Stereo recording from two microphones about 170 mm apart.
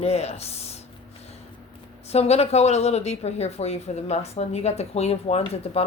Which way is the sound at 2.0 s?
40° left (ahead or behind).